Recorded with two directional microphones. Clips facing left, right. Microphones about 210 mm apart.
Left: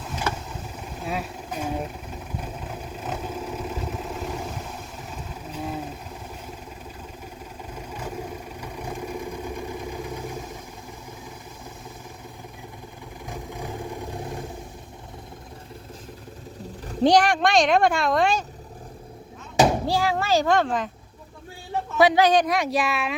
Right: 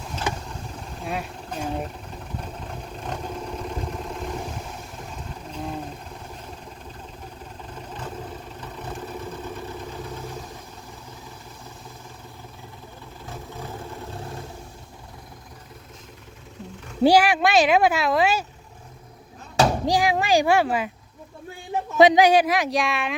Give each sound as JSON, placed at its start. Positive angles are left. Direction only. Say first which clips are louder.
{"t": 0.3, "sound": "vehicle", "louder": "right 1 dB", "side_deg": -15}
{"t": 1.0, "sound": "a sound", "louder": "even", "side_deg": 0}
{"t": 2.4, "sound": "vehicle", "louder": "left 1 dB", "side_deg": 5}
{"t": 7.7, "sound": "vehicle", "louder": "left 1 dB", "side_deg": 10}
{"t": 13.2, "sound": "vehicle", "louder": "left 2 dB", "side_deg": 15}
{"t": 17.0, "sound": "speech", "louder": "right 1 dB", "side_deg": -5}
{"t": 19.8, "sound": "a sound", "louder": "right 2 dB", "side_deg": -15}
{"t": 21.9, "sound": "speech", "louder": "right 3 dB", "side_deg": -20}